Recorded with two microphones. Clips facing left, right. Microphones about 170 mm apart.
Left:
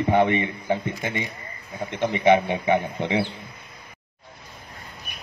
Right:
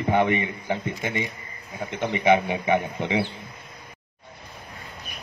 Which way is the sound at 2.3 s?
20° left (ahead or behind).